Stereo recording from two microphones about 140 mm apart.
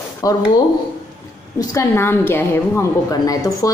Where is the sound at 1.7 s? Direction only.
20° left (ahead or behind).